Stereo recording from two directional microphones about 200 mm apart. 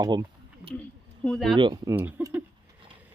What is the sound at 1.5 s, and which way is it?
Speech, 25° right (ahead or behind).